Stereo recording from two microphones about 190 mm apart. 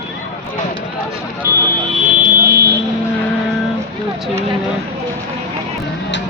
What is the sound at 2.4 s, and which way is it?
Vehicle, 55° right (ahead or behind).